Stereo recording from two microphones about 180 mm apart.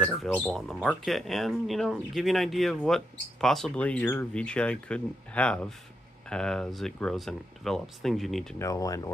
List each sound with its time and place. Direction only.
0.0 s speech: 5° left (ahead or behind)
8.5 s speech: 20° left (ahead or behind)